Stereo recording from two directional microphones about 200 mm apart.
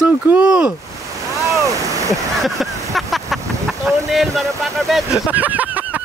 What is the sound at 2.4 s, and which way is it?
Speech, centre (ahead or behind).